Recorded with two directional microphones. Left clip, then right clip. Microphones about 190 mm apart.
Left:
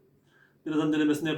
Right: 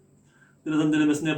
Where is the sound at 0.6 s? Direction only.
10° right (ahead or behind).